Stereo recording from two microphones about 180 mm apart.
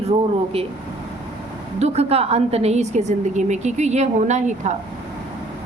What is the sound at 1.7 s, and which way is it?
A woman's voice, 35° right (ahead or behind).